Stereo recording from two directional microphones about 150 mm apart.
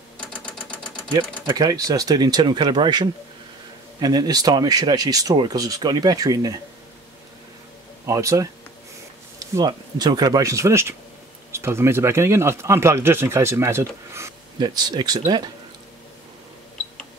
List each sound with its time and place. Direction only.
1.1 s speech: 25° right (ahead or behind)
8.1 s speech: 20° right (ahead or behind)
9.6 s speech: 25° right (ahead or behind)
14.6 s speech: 30° right (ahead or behind)